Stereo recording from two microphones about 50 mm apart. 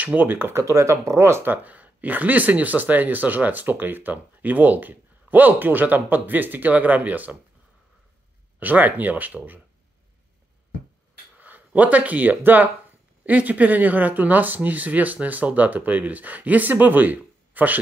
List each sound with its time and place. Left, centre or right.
0.0 s speech: right
0.5 s speech: right
1.4 s speech: right
8.5 s speech: right
11.3 s speech: right